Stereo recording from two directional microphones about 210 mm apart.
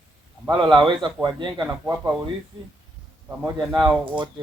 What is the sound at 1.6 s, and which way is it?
Speech, 10° right (ahead or behind).